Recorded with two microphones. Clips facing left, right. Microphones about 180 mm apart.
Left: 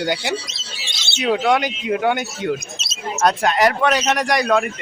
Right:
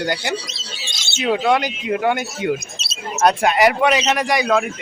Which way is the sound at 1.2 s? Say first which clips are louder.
Even; centre (ahead or behind).